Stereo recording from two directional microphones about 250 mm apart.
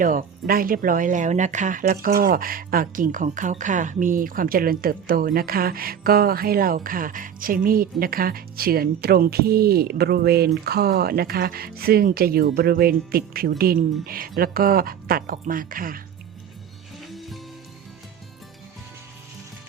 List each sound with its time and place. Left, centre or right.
0.0 s speech: right
17.1 s music: centre